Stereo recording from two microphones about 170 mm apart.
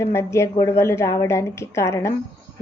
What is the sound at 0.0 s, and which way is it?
A woman's voice, 15° left (ahead or behind).